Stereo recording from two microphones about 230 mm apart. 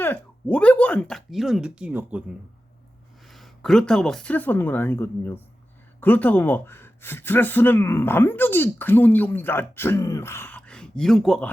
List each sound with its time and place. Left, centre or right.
0.0 s speech: centre
3.2 s speech: centre